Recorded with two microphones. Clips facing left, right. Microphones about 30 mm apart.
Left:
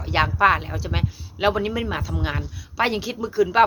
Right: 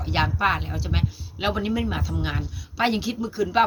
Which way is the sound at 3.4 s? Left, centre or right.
Centre.